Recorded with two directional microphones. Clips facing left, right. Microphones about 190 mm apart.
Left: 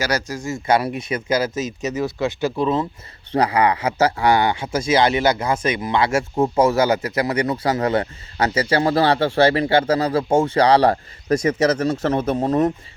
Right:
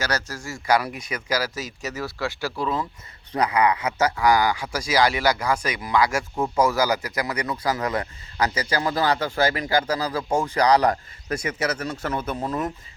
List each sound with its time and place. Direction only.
0.0 s speech: 10° left (ahead or behind); by 12.5 s 30° left (ahead or behind)